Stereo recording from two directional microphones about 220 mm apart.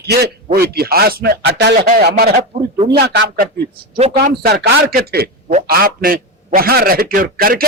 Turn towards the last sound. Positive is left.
turn(degrees=-40)  # may be behind; listen again after turning